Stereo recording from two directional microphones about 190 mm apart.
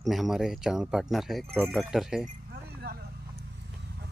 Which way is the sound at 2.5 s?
55° right (ahead or behind).